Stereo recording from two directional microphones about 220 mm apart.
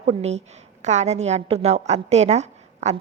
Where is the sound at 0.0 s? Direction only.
30° right (ahead or behind).